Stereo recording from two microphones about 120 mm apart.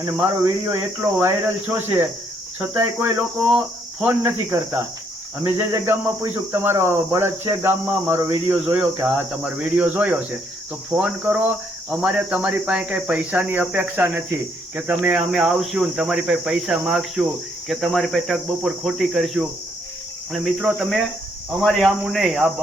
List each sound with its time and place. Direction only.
1.2 s cricket: 15° right (ahead or behind)
4.0 s speech: 20° right (ahead or behind)
8.6 s cricket: 15° right (ahead or behind)
15.3 s speech: centre (ahead or behind)